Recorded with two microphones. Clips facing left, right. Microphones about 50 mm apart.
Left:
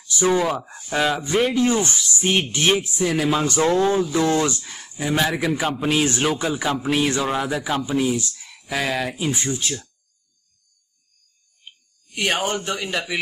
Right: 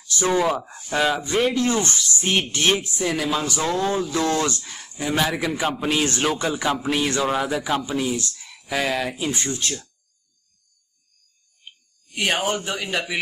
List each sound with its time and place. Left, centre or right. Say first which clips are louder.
0.0 s speech: left 1 dB; centre
0.7 s speech: left 1 dB; centre
0.9 s speech: left 1 dB; centre
3.5 s speech: left 6 dB; centre
12.1 s speech: even; centre